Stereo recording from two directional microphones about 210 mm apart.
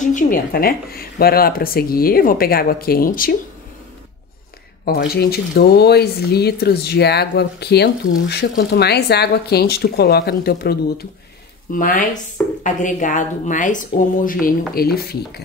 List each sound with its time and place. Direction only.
0.0 s speech: 40° left (ahead or behind)
4.8 s speech: 50° left (ahead or behind)